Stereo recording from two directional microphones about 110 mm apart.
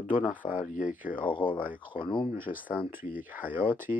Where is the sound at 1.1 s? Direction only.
50° left (ahead or behind).